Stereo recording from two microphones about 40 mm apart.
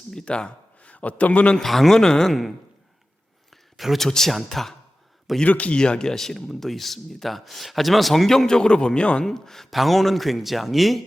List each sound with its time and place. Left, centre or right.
0.3 s a man's voice: left
1.5 s speech: centre
2.0 s speech: centre
3.5 s a sound: centre
4.0 s speech: centre
5.5 s speech: left
5.7 s speech: left
8.4 s speech: left
9.2 s speech: centre